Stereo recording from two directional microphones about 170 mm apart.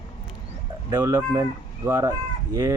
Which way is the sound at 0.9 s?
20° right (ahead or behind).